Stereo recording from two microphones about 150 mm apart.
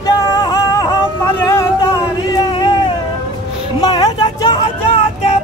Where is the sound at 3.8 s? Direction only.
30° left (ahead or behind).